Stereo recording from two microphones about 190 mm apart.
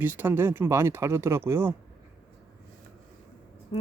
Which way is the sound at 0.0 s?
10° right (ahead or behind).